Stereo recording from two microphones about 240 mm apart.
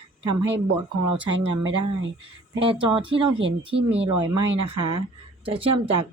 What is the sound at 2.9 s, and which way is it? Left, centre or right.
A woman's voice, right.